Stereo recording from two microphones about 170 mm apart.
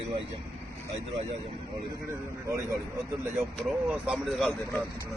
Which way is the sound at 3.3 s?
Centre (ahead or behind).